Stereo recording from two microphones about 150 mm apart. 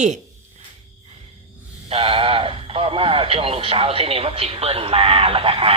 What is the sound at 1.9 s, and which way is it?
Speech, 40° right (ahead or behind).